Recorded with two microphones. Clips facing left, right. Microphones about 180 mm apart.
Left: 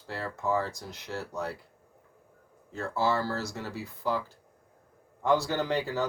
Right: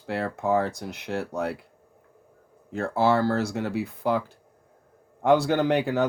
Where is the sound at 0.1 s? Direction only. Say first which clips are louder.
Right 6 dB; 65° right (ahead or behind).